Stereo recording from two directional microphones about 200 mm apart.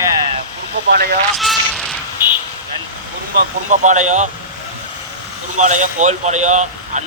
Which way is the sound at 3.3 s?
40° right (ahead or behind).